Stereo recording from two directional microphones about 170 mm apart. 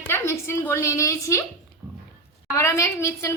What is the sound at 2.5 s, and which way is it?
Speech, 15° left (ahead or behind).